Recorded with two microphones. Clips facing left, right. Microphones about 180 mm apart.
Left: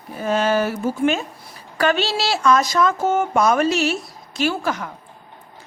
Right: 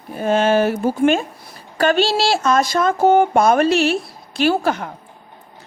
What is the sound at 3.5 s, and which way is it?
Speech, 60° right (ahead or behind).